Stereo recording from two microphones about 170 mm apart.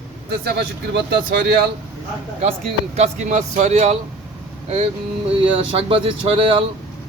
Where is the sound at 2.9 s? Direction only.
40° right (ahead or behind).